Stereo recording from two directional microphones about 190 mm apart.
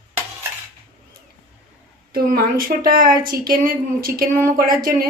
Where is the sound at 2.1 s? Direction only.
50° right (ahead or behind).